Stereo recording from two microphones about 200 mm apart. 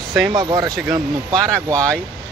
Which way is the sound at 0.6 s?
Centre (ahead or behind).